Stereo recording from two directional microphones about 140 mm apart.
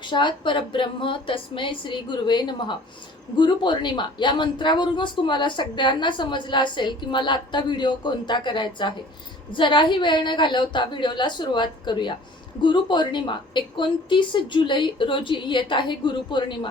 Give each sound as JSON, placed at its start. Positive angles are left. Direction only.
{"t": 0.0, "sound": "speech", "side_deg": 35}